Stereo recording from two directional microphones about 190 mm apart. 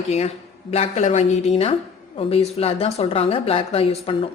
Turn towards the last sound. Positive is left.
turn(degrees=30)  # may be behind; listen again after turning